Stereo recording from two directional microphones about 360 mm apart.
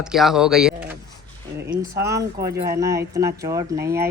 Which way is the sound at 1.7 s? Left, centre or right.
Right.